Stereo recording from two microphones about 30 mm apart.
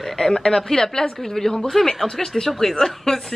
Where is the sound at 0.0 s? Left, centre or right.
Centre.